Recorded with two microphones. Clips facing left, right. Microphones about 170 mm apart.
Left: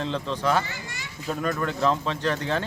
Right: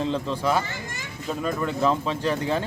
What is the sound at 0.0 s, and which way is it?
Speech, 5° right (ahead or behind).